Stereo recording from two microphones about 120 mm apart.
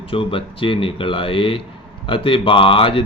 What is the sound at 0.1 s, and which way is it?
Speech, 50° left (ahead or behind).